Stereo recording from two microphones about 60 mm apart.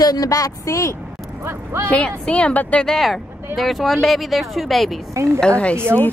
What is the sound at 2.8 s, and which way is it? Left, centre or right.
Speech, centre.